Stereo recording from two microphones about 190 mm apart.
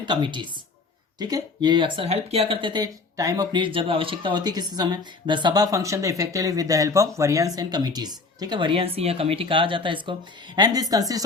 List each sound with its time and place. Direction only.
0.1 s speech: 25° right (ahead or behind)